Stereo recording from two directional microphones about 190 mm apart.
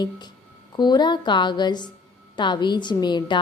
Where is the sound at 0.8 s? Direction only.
25° left (ahead or behind).